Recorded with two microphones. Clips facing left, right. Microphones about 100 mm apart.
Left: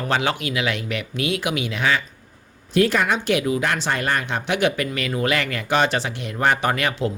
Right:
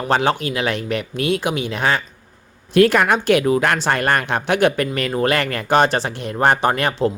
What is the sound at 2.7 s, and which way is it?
Speech, 60° right (ahead or behind).